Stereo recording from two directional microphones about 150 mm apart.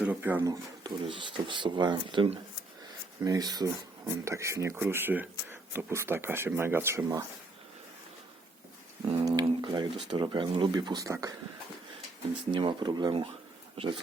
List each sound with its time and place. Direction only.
0.0 s speech: 10° right (ahead or behind)
0.4 s speech: 30° right (ahead or behind)
3.2 s speech: 25° right (ahead or behind)
9.2 s speech: 25° right (ahead or behind)
12.5 s speech: 30° right (ahead or behind)